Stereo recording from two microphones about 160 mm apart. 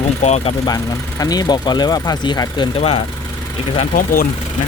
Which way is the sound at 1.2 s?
25° left (ahead or behind).